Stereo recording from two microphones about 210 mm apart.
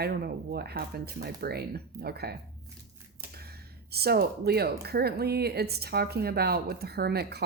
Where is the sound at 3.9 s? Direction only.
50° right (ahead or behind).